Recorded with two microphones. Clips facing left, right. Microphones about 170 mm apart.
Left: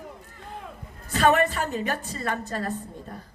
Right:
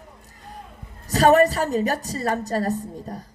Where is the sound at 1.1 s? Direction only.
40° right (ahead or behind).